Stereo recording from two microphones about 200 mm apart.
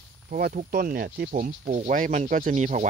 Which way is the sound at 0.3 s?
45° right (ahead or behind).